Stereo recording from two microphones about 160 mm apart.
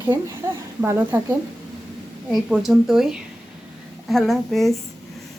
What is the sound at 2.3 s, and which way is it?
Speech, centre (ahead or behind).